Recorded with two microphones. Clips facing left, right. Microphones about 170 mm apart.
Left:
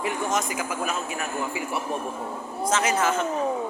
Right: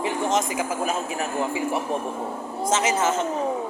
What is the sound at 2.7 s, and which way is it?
Speech, 25° right (ahead or behind).